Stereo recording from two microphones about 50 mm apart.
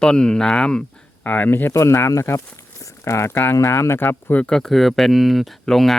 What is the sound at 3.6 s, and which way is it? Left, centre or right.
Speech, left.